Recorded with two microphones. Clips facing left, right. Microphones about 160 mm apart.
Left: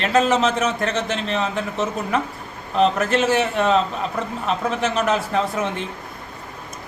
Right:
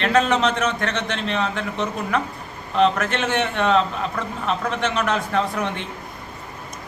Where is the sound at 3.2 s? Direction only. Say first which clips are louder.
Left 2 dB; 5° left (ahead or behind).